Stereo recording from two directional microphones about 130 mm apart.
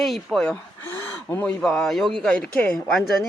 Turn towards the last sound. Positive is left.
turn(degrees=10)  # may be behind; listen again after turning